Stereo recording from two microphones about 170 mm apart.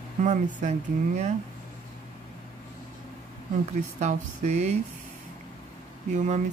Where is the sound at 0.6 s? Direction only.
45° right (ahead or behind).